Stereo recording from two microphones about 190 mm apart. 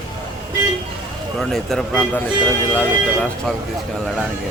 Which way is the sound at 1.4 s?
Centre (ahead or behind).